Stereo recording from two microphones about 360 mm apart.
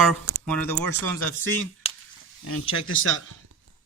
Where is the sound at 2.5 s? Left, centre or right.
Left.